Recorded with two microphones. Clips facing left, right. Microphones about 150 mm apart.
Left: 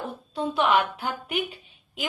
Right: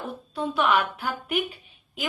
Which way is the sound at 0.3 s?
25° left (ahead or behind).